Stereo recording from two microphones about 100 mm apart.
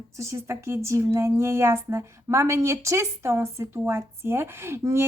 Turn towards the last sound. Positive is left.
turn(degrees=-25)  # may be behind; listen again after turning